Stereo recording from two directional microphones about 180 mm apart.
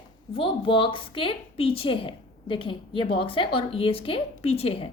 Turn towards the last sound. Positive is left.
turn(degrees=30)  # may be behind; listen again after turning